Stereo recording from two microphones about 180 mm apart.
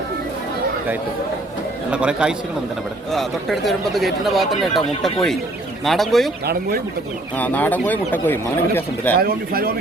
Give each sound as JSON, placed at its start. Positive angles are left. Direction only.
{"t": 1.9, "sound": "speech", "side_deg": -5}
{"t": 6.4, "sound": "speech", "side_deg": -60}
{"t": 7.3, "sound": "speech", "side_deg": 10}
{"t": 9.1, "sound": "speech", "side_deg": -55}